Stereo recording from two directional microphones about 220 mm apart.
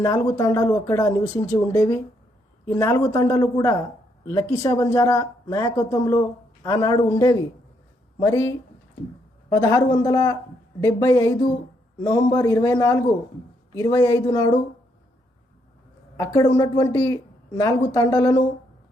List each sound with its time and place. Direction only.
0.0 s speech: 15° left (ahead or behind)
16.1 s speech: 15° left (ahead or behind)